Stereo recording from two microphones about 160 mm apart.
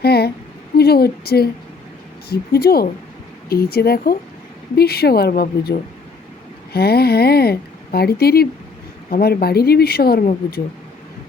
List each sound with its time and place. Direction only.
0.0 s a sound: 80° left
0.8 s speech: 75° left (ahead or behind)
6.7 s speech: 80° left